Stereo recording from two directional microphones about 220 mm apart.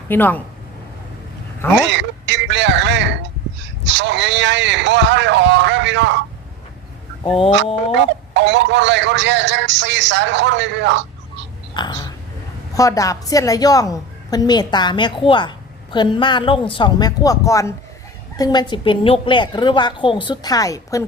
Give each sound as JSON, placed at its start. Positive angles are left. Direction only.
{"t": 0.1, "sound": "a woman's voice", "side_deg": 10}
{"t": 1.9, "sound": "a sound", "side_deg": -55}
{"t": 3.8, "sound": "speech", "side_deg": -55}
{"t": 7.3, "sound": "a woman's voice", "side_deg": 25}
{"t": 7.9, "sound": "speech", "side_deg": -50}
{"t": 11.7, "sound": "a woman's voice", "side_deg": 20}